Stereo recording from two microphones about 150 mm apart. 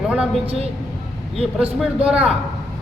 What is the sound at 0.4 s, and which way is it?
Speech, 40° right (ahead or behind).